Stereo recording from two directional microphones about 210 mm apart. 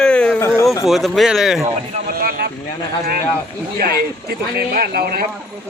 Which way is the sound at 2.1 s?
45° right (ahead or behind).